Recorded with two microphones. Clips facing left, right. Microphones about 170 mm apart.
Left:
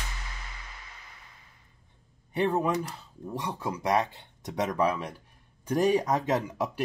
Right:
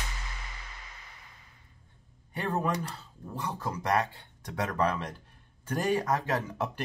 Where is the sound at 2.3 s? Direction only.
15° left (ahead or behind).